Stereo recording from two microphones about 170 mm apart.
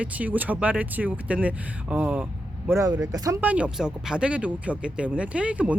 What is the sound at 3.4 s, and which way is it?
Speech, 5° right (ahead or behind).